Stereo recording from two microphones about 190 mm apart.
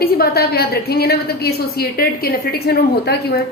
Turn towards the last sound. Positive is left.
turn(degrees=60)  # may be behind; listen again after turning